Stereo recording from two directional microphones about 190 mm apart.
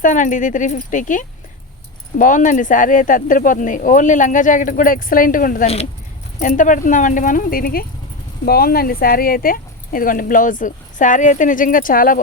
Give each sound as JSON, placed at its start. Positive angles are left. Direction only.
{"t": 0.0, "sound": "speech", "side_deg": 40}